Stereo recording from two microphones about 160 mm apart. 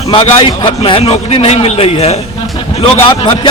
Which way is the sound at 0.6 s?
35° left (ahead or behind).